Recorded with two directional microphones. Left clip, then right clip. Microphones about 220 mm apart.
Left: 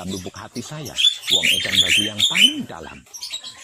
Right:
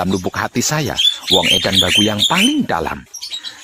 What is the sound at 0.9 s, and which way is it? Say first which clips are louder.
Speech: right 2 dB; 15° right (ahead or behind).